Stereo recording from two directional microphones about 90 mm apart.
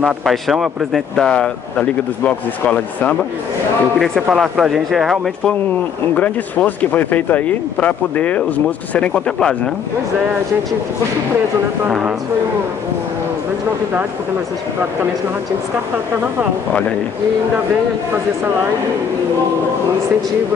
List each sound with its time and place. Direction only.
0.0 s speech: centre (ahead or behind); by 3.2 s 15° left (ahead or behind)
4.3 s speech: centre (ahead or behind)
6.1 s speech: 15° left (ahead or behind)